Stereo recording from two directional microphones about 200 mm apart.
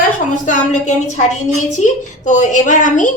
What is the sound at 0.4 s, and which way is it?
A woman's voice, 40° left (ahead or behind).